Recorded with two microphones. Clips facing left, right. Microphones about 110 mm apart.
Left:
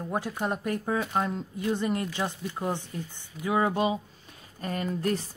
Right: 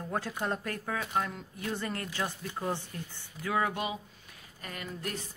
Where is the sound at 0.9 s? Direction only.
30° left (ahead or behind).